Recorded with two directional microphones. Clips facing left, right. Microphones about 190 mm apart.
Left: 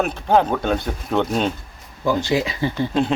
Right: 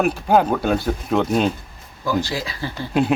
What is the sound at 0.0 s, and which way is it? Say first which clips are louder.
Speech: right 1 dB; 5° right (ahead or behind).